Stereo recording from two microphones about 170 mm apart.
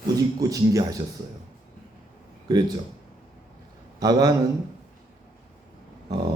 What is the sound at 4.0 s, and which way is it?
Speech, 20° right (ahead or behind).